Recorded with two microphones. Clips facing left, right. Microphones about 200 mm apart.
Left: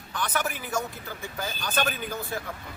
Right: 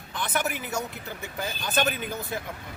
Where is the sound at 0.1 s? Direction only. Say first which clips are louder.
Right 1 dB; 20° right (ahead or behind).